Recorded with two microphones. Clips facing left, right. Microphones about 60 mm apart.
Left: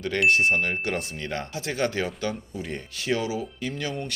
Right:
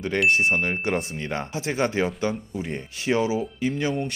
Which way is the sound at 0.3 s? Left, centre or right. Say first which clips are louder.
Even; centre.